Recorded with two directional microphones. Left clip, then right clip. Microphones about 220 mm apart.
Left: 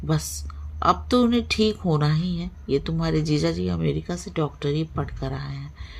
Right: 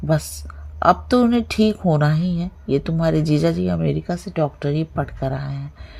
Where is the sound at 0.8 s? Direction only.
25° right (ahead or behind).